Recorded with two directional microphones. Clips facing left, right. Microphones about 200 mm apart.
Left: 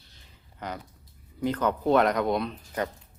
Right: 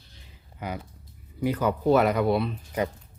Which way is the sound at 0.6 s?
10° right (ahead or behind).